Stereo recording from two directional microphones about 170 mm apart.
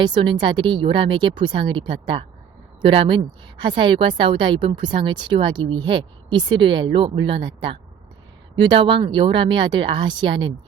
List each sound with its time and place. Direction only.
0.0 s a woman's voice: 30° right (ahead or behind)